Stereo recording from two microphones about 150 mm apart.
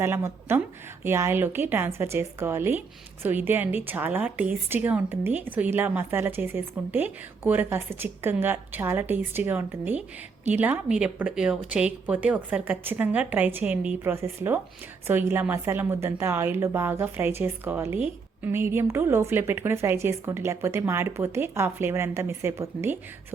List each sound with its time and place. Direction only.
0.0 s a woman's voice: 15° right (ahead or behind)